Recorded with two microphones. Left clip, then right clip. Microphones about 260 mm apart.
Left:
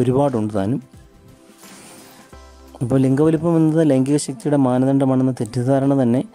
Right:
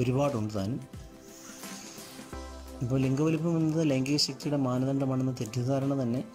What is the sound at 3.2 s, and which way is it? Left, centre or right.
Speech, left.